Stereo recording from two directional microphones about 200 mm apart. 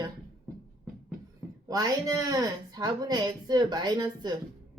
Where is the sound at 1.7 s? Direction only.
20° right (ahead or behind).